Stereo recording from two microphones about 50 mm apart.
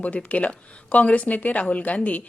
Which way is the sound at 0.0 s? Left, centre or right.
Left.